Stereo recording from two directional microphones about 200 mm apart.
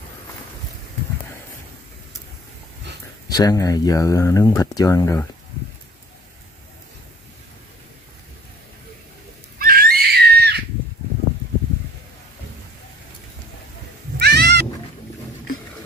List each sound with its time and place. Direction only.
3.3 s speech: 20° left (ahead or behind)
9.6 s screaming: 45° right (ahead or behind)
14.1 s cat: 55° right (ahead or behind)